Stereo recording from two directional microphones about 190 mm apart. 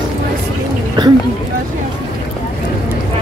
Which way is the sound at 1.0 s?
20° right (ahead or behind).